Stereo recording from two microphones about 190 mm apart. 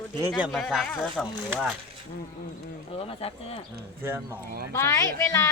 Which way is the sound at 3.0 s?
30° left (ahead or behind).